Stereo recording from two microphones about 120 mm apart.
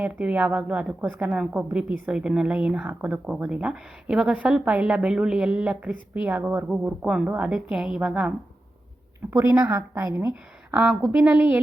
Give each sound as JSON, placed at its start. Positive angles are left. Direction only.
{"t": 0.0, "sound": "a woman's voice", "side_deg": -10}
{"t": 9.3, "sound": "a woman's voice", "side_deg": -10}